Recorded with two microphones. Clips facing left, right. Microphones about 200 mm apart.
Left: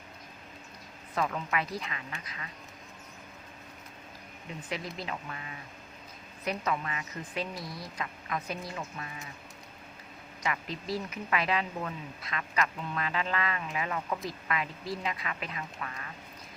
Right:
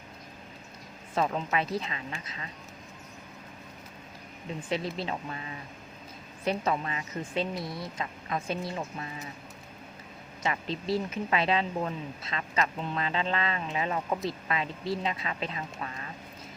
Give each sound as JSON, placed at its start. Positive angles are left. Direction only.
{"t": 1.1, "sound": "speech", "side_deg": -30}
{"t": 4.9, "sound": "speech", "side_deg": -30}
{"t": 10.4, "sound": "speech", "side_deg": -30}